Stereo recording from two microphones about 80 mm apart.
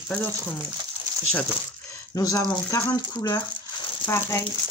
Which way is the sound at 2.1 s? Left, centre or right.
Left.